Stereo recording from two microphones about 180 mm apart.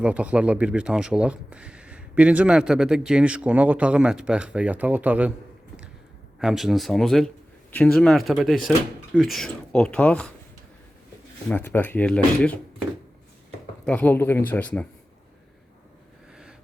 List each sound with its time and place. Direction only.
0.0 s speech: 5° right (ahead or behind)
6.4 s speech: centre (ahead or behind)
11.4 s speech: 10° left (ahead or behind)
13.8 s speech: 10° left (ahead or behind)
16.3 s a sound: 5° right (ahead or behind)